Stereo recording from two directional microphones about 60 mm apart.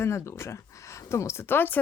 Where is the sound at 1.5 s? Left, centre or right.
Left.